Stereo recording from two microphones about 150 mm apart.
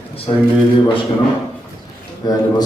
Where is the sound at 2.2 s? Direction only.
25° left (ahead or behind).